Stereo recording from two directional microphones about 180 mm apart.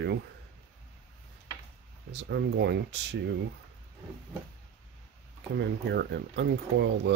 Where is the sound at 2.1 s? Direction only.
75° right (ahead or behind).